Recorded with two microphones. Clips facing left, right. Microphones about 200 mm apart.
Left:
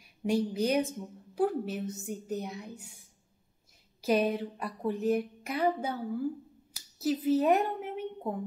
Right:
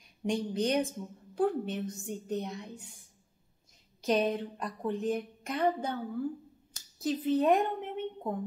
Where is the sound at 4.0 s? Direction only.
5° left (ahead or behind).